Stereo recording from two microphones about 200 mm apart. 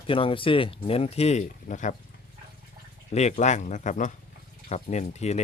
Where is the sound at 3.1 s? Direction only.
35° left (ahead or behind).